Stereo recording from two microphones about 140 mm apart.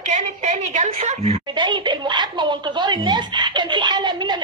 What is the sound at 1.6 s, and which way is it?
Speech, 35° right (ahead or behind).